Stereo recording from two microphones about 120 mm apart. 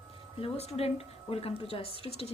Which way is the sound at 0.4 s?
60° left (ahead or behind).